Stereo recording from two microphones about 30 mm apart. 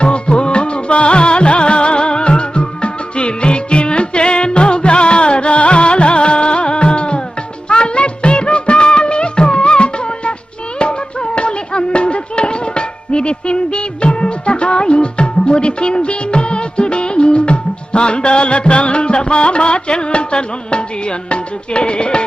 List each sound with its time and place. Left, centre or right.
0.0 s music: left
7.7 s music of bollywood: left
10.8 s music: left